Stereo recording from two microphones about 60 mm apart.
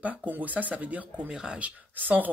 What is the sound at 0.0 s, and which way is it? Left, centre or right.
Speech, right.